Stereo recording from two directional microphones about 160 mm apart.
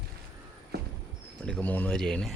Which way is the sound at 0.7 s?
90° right.